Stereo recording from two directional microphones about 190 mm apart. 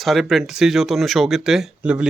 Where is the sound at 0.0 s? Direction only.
Centre (ahead or behind).